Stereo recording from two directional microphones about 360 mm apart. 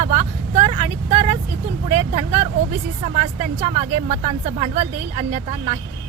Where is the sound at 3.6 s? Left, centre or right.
Centre.